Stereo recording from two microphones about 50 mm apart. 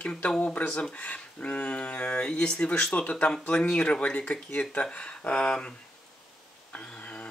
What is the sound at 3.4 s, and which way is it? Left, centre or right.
Speech, left.